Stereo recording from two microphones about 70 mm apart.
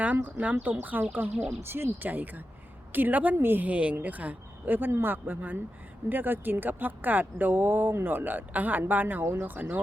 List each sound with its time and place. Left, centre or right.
0.0 s speech: right